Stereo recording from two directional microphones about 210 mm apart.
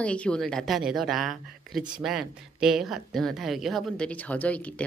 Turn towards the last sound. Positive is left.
turn(degrees=5)  # may be behind; listen again after turning